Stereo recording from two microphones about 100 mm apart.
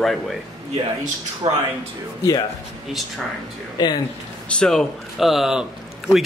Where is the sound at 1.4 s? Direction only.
90° right.